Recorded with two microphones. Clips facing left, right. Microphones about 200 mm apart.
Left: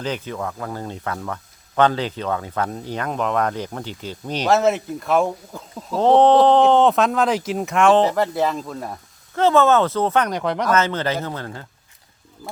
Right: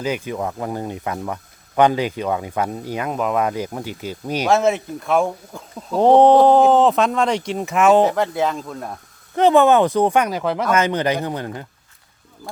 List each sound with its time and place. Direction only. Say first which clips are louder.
0.0 s speech: right 3 dB; 10° right (ahead or behind)
0.3 s speech: right 3 dB; 20° right (ahead or behind)
4.4 s speech: even; centre (ahead or behind)
6.0 s speech: right 2 dB; 15° right (ahead or behind)
9.3 s speech: right 2 dB; 15° right (ahead or behind)
10.8 s speech: right 2 dB; 15° right (ahead or behind)